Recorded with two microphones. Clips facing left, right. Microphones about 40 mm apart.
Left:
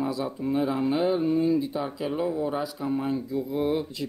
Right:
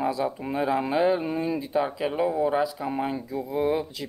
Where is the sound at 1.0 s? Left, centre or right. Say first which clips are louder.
Left 2 dB; right.